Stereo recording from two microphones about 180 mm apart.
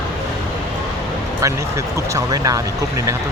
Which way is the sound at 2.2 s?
20° right (ahead or behind).